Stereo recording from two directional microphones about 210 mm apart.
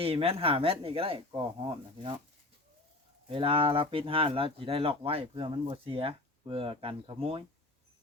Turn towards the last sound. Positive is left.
turn(degrees=-25)  # may be behind; listen again after turning